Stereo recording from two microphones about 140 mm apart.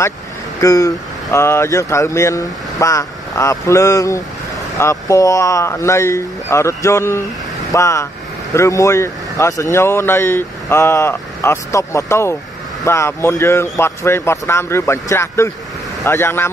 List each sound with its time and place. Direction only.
0.6 s speech: 25° left (ahead or behind)